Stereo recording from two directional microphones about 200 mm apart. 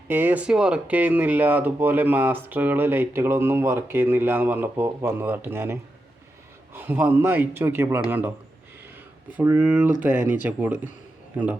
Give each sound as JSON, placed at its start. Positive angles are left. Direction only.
{"t": 0.1, "sound": "speech", "side_deg": -10}
{"t": 9.4, "sound": "speech", "side_deg": -10}